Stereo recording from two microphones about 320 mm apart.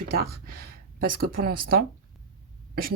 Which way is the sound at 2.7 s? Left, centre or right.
Right.